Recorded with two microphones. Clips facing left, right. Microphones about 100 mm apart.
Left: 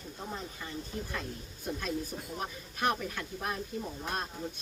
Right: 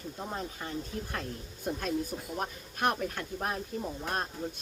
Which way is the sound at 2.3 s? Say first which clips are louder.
Right 3 dB; 50° right (ahead or behind).